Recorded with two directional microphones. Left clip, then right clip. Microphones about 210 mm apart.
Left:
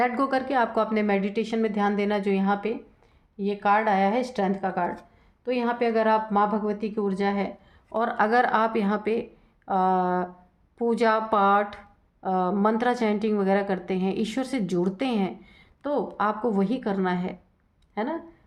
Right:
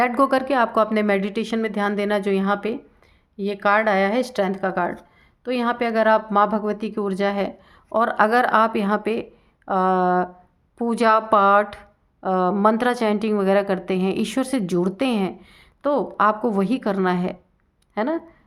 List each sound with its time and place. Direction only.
0.0 s a woman's voice: 35° right (ahead or behind)